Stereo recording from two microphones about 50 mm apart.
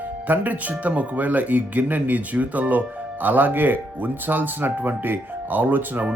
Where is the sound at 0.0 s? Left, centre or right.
Right.